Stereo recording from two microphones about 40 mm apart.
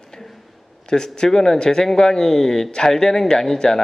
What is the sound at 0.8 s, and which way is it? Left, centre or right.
Speech, centre.